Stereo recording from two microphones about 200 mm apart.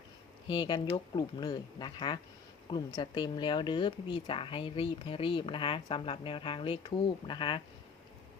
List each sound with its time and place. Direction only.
0.4 s speech: 25° left (ahead or behind)